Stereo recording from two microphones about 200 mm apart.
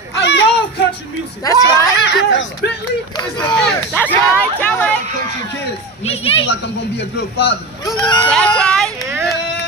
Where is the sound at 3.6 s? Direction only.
5° left (ahead or behind).